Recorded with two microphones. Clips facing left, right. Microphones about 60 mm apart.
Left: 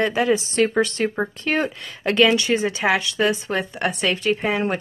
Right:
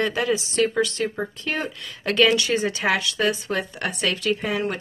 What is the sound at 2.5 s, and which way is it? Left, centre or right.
A woman's voice, centre.